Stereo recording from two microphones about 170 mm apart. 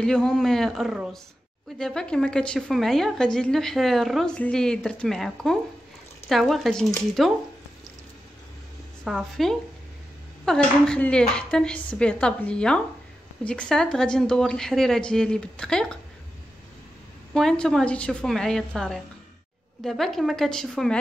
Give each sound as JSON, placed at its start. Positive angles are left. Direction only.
{"t": 0.0, "sound": "a woman's voice", "side_deg": 5}
{"t": 9.0, "sound": "a woman's voice", "side_deg": 0}
{"t": 17.3, "sound": "a woman's voice", "side_deg": 5}